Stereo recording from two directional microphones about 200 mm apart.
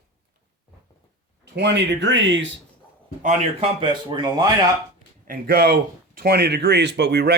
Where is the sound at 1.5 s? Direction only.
60° right (ahead or behind).